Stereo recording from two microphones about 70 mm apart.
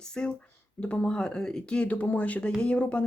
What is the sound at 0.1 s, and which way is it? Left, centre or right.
Speech, centre.